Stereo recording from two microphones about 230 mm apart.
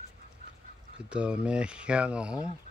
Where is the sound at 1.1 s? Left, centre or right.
Centre.